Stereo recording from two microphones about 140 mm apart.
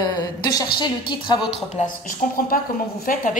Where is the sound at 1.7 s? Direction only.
65° left (ahead or behind); by 3.4 s 85° left.